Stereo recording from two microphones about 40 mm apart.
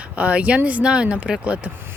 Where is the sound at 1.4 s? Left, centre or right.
Right.